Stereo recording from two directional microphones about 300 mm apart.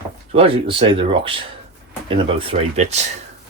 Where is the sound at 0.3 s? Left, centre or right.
Centre.